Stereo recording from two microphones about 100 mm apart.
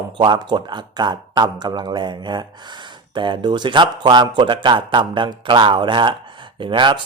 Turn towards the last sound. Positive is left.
turn(degrees=-55)  # may be behind; listen again after turning